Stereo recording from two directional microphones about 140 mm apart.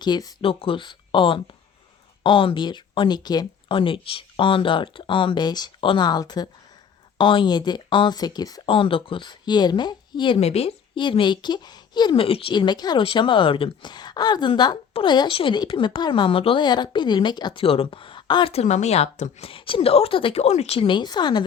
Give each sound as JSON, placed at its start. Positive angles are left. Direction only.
{"t": 0.0, "sound": "speech", "side_deg": 30}
{"t": 0.4, "sound": "speech", "side_deg": 40}
{"t": 8.6, "sound": "speech", "side_deg": 40}
{"t": 10.3, "sound": "speech", "side_deg": 45}